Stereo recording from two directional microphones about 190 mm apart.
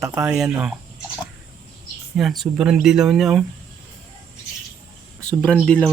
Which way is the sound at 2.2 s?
Centre (ahead or behind).